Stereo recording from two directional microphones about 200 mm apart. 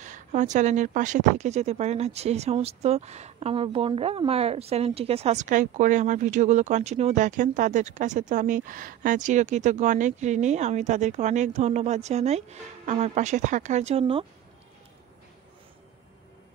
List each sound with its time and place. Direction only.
0.0 s a woman's voice: 35° right (ahead or behind)